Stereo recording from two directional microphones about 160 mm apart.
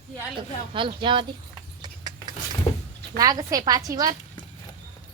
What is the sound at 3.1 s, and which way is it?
A woman's voice, 25° right (ahead or behind).